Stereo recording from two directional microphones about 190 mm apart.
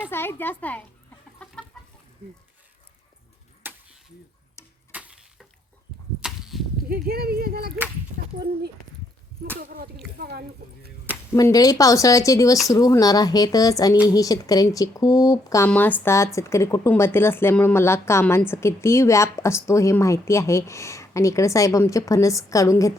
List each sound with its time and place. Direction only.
0.1 s speech: 10° left (ahead or behind)
1.4 s chicken: 5° left (ahead or behind)
3.6 s a sound: 10° right (ahead or behind)
4.9 s a sound: 5° right (ahead or behind)
6.2 s whip: centre (ahead or behind)
6.8 s speech: 55° right (ahead or behind)
10.2 s speech: 55° right (ahead or behind)
11.3 s speech: 20° left (ahead or behind)